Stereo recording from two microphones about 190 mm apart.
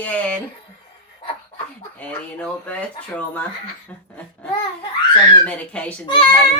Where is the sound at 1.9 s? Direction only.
5° left (ahead or behind).